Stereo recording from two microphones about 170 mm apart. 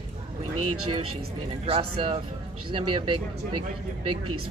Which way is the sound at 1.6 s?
35° right (ahead or behind).